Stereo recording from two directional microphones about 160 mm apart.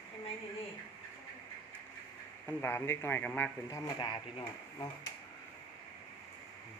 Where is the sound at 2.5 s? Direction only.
15° left (ahead or behind); by 4.9 s 30° left (ahead or behind).